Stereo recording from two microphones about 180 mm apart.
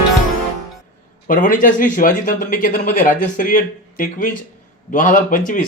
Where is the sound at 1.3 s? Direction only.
45° left (ahead or behind).